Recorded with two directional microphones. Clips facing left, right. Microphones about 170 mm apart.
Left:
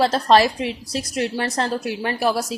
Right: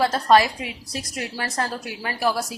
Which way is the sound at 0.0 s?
25° left (ahead or behind).